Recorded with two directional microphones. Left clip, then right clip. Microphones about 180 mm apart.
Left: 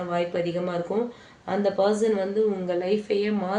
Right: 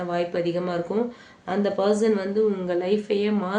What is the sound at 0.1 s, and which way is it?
Speech, 20° right (ahead or behind).